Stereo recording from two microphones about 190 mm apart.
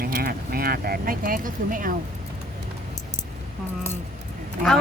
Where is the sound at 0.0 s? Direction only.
55° right (ahead or behind).